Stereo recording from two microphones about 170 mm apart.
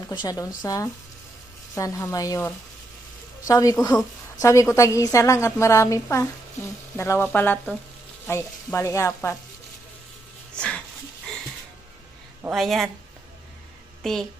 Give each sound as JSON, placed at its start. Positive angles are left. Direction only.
{"t": 0.1, "sound": "a woman's voice", "side_deg": 25}
{"t": 12.4, "sound": "speech", "side_deg": 0}
{"t": 14.0, "sound": "a woman's voice", "side_deg": 0}